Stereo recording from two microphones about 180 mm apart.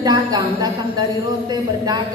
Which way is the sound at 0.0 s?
20° right (ahead or behind).